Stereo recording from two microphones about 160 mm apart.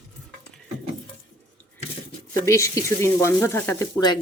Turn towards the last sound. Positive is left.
turn(degrees=15)  # may be behind; listen again after turning